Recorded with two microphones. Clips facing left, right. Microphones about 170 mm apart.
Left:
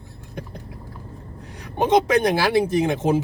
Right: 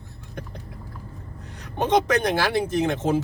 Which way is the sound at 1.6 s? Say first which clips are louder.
Left 3 dB; 10° left (ahead or behind).